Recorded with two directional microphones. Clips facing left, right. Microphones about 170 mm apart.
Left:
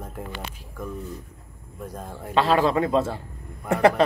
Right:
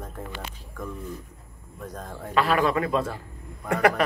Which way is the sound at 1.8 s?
10° left (ahead or behind).